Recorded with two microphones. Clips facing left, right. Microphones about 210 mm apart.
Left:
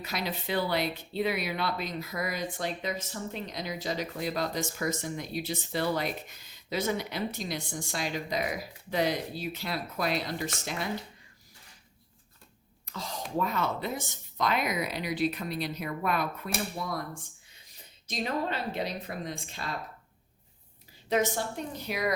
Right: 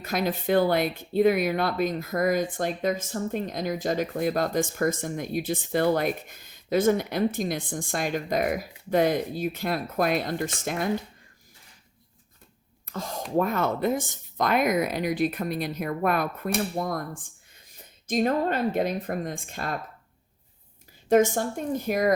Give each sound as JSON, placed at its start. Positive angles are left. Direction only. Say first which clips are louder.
{"t": 0.0, "sound": "speech", "louder": "right 8 dB", "side_deg": -50}
{"t": 12.8, "sound": "a sound", "louder": "right 5 dB", "side_deg": -50}
{"t": 13.3, "sound": "speech", "louder": "right 6 dB", "side_deg": -50}
{"t": 18.1, "sound": "speech", "louder": "right 8 dB", "side_deg": -50}
{"t": 21.1, "sound": "speech", "louder": "right 8 dB", "side_deg": -50}